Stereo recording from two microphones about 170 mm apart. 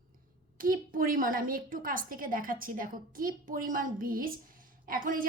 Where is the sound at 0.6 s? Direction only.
55° right (ahead or behind).